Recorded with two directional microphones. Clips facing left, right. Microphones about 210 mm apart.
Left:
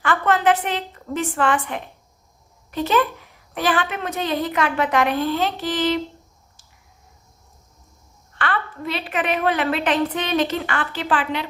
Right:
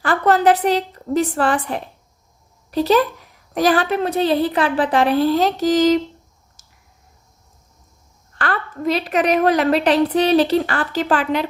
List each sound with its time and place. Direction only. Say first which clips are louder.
0.0 s a woman's voice: right 4 dB; 35° right (ahead or behind)
6.6 s a sound: even; 40° right (ahead or behind)
8.4 s a woman's voice: right 2 dB; 40° right (ahead or behind)